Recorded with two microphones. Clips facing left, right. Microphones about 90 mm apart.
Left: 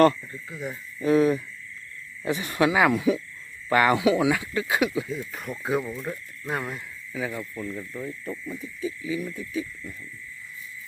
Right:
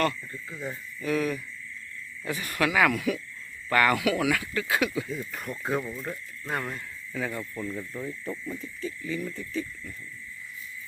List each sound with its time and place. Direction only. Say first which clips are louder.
0.5 s goat: left 2 dB; 15° left (ahead or behind)
0.9 s cricket: left 8 dB; 30° left (ahead or behind)
2.2 s speech: left 5 dB; 20° left (ahead or behind)
5.0 s speech: left 2 dB; centre (ahead or behind)
8.5 s goat: left 3 dB; 10° left (ahead or behind)